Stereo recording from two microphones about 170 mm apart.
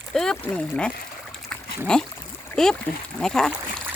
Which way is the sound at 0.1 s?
5° left (ahead or behind).